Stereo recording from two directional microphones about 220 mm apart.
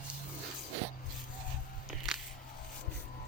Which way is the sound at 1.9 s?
Centre (ahead or behind).